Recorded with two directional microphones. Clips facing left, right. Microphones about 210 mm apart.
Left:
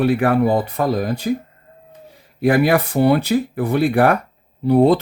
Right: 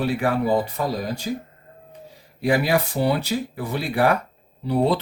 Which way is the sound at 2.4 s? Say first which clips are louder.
Left 5 dB; 55° left (ahead or behind).